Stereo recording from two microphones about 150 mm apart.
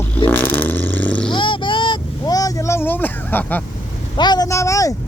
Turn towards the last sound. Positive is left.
turn(degrees=20)  # may be behind; listen again after turning